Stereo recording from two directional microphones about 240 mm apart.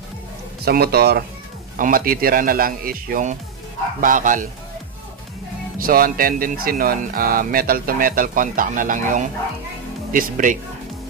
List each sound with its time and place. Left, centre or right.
0.6 s speech: right
5.8 s speech: right